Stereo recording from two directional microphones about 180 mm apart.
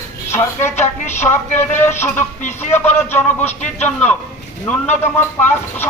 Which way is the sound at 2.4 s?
40° left (ahead or behind).